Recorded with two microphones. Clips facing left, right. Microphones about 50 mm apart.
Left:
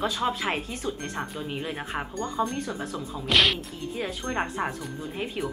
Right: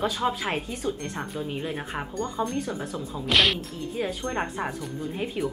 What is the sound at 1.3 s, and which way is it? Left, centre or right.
Speech, centre.